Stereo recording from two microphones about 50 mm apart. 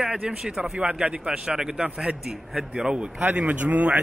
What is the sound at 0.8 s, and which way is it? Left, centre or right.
A man's voice, right.